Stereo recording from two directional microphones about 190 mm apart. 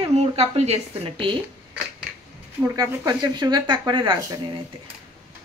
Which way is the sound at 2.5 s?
15° right (ahead or behind).